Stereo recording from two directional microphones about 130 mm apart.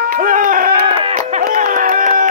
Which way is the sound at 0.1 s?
90° right.